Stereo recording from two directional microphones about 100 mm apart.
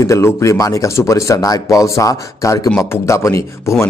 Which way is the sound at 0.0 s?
30° left (ahead or behind).